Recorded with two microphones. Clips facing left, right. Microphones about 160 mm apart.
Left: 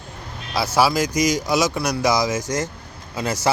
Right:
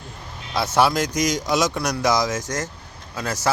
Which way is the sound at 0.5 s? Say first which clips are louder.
Even; 5° left (ahead or behind).